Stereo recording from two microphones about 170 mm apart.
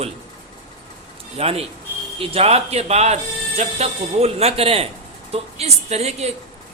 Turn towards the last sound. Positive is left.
turn(degrees=-40)  # may be behind; listen again after turning